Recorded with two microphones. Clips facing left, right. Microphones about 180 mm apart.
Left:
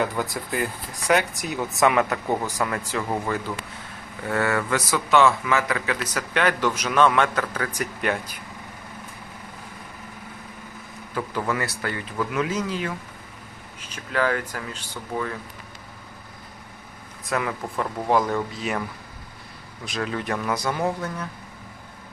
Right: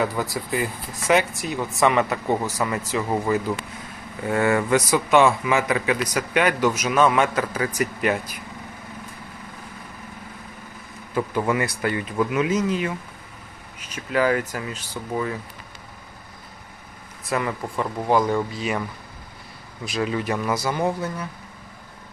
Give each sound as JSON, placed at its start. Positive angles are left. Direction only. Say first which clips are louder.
{"t": 0.0, "sound": "a man's voice", "louder": "right 1 dB", "side_deg": 0}
{"t": 11.1, "sound": "a man's voice", "louder": "right 4 dB", "side_deg": -10}
{"t": 12.3, "sound": "a man's voice", "louder": "right 3 dB", "side_deg": -5}
{"t": 13.9, "sound": "a man's voice", "louder": "right 3 dB", "side_deg": -10}
{"t": 17.2, "sound": "speech", "louder": "right 1 dB", "side_deg": 0}
{"t": 19.8, "sound": "speech", "louder": "right 4 dB", "side_deg": -5}